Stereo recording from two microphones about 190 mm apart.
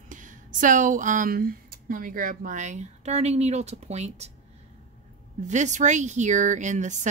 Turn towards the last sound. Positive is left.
turn(degrees=-40)  # may be behind; listen again after turning